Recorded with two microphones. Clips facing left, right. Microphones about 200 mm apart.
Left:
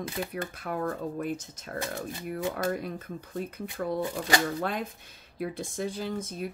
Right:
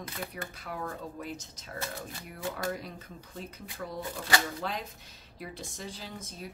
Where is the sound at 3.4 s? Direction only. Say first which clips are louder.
Left 7 dB; 55° left (ahead or behind).